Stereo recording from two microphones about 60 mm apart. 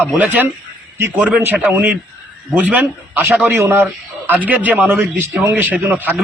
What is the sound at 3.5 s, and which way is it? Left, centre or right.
Speech, right.